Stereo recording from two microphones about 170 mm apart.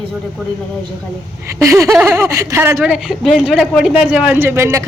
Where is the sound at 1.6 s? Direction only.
15° right (ahead or behind).